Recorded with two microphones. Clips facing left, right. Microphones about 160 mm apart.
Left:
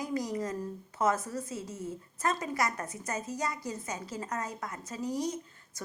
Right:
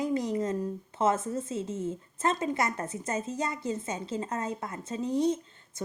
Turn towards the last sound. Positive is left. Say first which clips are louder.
# right 6 dB
turn(degrees=-25)  # may be behind; listen again after turning